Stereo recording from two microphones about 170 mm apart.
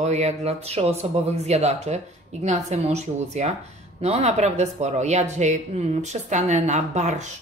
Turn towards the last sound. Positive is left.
turn(degrees=-45)  # may be behind; listen again after turning